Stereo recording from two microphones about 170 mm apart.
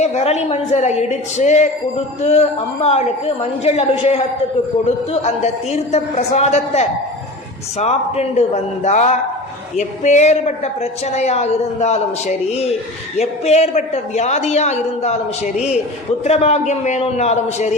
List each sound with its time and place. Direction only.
0.0 s a woman's voice: 40° left (ahead or behind)
5.2 s a woman's voice: 40° left (ahead or behind)
16.2 s a woman's voice: 40° left (ahead or behind)